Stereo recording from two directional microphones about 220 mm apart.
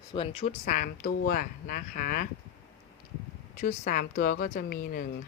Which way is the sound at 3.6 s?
35° left (ahead or behind).